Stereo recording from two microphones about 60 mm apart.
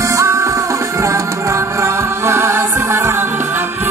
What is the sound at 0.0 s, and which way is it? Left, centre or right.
Music, right.